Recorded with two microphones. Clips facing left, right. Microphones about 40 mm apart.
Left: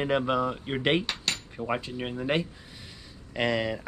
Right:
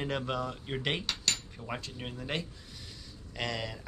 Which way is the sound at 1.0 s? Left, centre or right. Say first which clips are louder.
Left 2 dB; centre.